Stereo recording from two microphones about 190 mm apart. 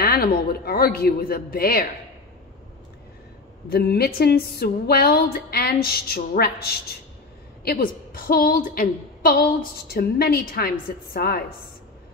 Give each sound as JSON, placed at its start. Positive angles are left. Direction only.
{"t": 0.0, "sound": "a woman's voice", "side_deg": 50}
{"t": 3.6, "sound": "a woman's voice", "side_deg": 55}